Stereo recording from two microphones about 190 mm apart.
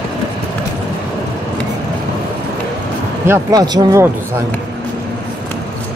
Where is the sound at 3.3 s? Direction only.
20° right (ahead or behind).